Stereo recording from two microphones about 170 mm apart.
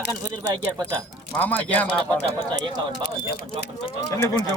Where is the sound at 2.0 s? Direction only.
25° right (ahead or behind).